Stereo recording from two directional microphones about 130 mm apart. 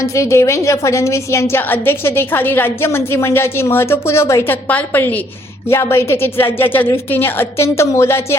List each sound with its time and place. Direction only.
0.0 s a woman's voice: 25° left (ahead or behind)